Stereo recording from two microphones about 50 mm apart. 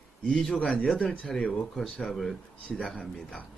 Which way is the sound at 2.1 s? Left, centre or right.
Centre.